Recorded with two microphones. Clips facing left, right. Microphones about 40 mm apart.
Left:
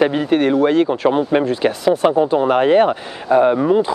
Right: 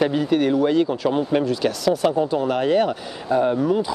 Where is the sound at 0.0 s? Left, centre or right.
Left.